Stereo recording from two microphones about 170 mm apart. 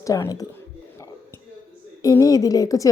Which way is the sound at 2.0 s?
20° left (ahead or behind).